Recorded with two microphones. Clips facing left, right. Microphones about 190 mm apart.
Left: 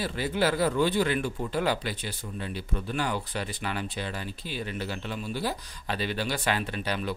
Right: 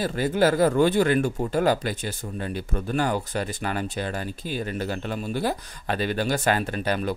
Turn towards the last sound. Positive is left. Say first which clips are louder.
# right 5 dB
turn(degrees=-45)  # may be behind; listen again after turning